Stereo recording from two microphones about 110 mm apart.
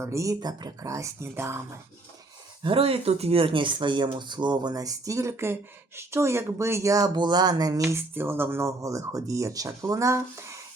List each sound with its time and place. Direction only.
0.0 s speech: 25° right (ahead or behind)
2.6 s speech: 60° right (ahead or behind); by 10.6 s 25° right (ahead or behind)